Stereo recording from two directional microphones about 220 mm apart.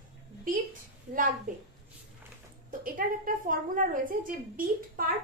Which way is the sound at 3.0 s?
40° right (ahead or behind).